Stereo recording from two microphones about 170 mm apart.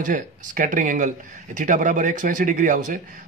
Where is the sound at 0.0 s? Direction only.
50° right (ahead or behind).